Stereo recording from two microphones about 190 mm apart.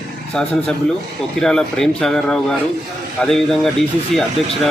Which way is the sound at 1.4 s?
5° left (ahead or behind).